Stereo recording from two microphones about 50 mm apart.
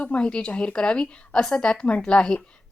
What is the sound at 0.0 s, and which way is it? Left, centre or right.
Speech, left.